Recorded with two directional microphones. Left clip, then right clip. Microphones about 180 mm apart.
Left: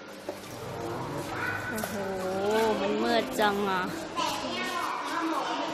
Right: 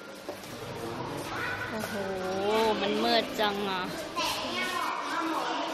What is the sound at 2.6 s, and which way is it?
Speech, 10° left (ahead or behind).